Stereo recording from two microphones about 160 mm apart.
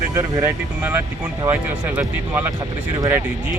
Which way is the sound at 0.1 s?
15° right (ahead or behind).